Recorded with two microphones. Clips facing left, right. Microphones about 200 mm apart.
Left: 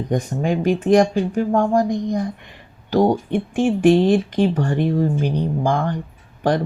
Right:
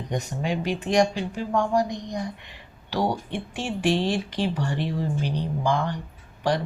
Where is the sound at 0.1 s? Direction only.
50° left (ahead or behind).